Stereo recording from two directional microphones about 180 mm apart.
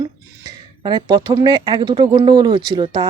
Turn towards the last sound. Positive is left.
turn(degrees=-25)  # may be behind; listen again after turning